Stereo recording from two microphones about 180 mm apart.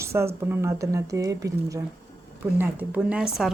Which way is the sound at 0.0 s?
15° right (ahead or behind).